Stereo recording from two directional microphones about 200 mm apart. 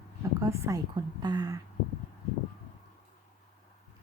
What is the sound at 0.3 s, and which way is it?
Speech, 15° right (ahead or behind).